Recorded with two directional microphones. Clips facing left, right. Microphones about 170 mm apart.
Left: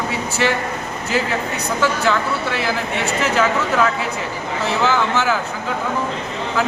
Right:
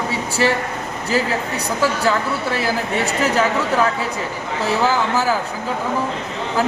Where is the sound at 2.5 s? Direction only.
40° right (ahead or behind).